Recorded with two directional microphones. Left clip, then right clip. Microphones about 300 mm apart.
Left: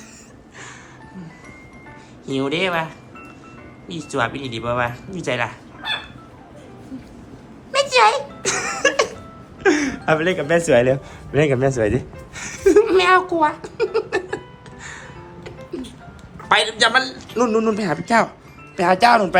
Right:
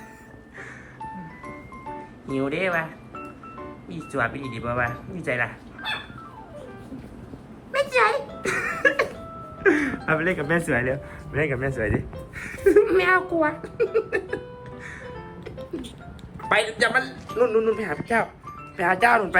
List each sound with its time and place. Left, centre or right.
2.2 s speech: centre
3.8 s speech: centre
7.7 s a sound: centre
9.6 s speech: centre
12.7 s a sound: centre
14.8 s music: centre
16.5 s speech: centre